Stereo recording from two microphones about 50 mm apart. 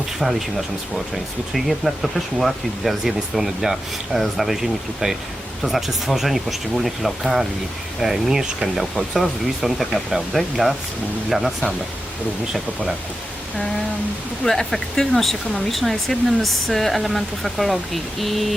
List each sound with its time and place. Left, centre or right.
0.2 s speech: centre
14.4 s speech: centre